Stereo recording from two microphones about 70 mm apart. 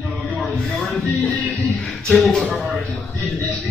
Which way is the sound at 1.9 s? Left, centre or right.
Centre.